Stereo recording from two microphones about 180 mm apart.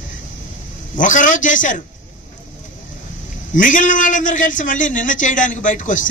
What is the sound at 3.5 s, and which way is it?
A man's voice, 45° left (ahead or behind).